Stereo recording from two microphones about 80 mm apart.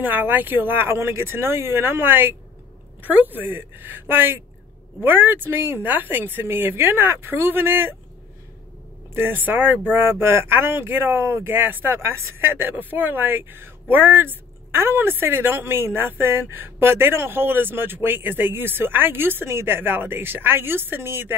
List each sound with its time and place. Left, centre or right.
0.0 s speech: right
9.1 s speech: right